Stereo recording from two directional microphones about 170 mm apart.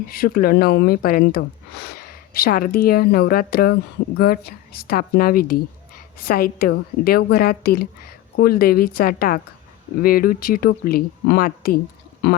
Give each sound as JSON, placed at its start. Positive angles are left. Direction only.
{"t": 0.1, "sound": "speech", "side_deg": 60}